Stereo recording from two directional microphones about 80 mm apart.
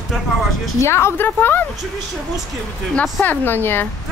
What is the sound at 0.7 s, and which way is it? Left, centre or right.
Speech, left.